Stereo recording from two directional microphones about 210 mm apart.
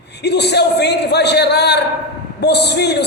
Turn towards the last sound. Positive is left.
turn(degrees=55)  # may be behind; listen again after turning